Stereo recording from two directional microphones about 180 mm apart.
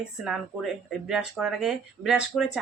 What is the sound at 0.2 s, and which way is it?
Speech, centre (ahead or behind).